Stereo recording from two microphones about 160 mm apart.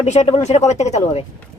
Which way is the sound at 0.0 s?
45° left (ahead or behind).